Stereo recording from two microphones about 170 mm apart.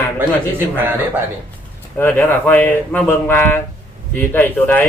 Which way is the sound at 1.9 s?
10° left (ahead or behind).